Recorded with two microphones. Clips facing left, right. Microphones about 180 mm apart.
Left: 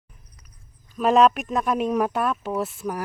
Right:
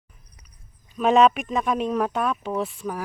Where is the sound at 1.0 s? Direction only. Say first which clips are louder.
Even; centre (ahead or behind).